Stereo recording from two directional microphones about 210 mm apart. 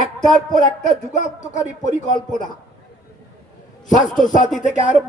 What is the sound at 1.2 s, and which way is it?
Speech, 35° left (ahead or behind).